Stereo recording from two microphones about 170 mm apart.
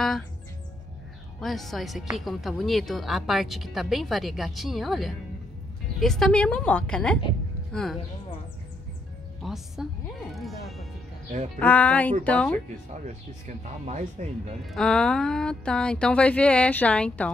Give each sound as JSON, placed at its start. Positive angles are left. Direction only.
{"t": 1.4, "sound": "speech", "side_deg": 0}
{"t": 9.4, "sound": "speech", "side_deg": 0}
{"t": 13.5, "sound": "speech", "side_deg": -45}
{"t": 14.7, "sound": "speech", "side_deg": 5}